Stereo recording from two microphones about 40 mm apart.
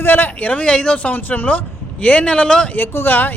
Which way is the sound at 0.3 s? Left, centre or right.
Left.